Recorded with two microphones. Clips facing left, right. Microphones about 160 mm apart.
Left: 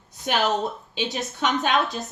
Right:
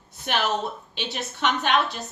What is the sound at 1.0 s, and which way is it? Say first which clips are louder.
Speech: left 4 dB; 20° left (ahead or behind).